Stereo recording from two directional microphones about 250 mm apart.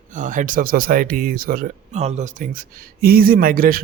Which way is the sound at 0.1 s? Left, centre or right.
Right.